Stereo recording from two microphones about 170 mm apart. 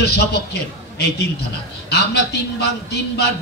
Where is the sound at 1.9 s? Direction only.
75° left (ahead or behind).